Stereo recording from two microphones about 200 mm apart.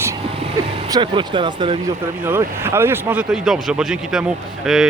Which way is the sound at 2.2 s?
10° right (ahead or behind).